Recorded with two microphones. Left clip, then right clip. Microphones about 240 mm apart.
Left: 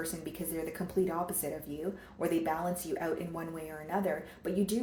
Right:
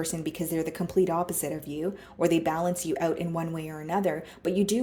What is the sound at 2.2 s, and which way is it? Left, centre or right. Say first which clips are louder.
Speech: right 7 dB; right.